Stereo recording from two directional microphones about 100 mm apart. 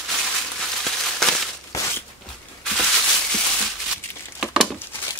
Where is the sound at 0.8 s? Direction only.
5° left (ahead or behind).